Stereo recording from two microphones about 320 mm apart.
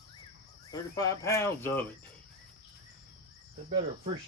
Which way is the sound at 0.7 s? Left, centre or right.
Centre.